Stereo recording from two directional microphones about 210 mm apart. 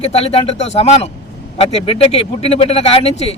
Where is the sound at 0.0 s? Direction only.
30° left (ahead or behind).